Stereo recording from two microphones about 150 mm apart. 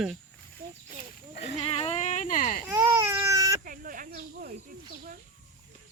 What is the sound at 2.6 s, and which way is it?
Baby cry, 20° right (ahead or behind).